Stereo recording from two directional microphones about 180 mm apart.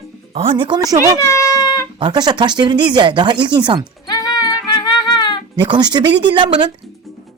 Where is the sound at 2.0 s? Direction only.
25° right (ahead or behind).